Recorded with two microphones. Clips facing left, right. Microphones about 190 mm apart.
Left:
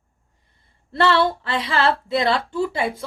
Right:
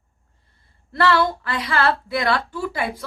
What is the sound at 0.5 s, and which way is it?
Speech, 25° left (ahead or behind).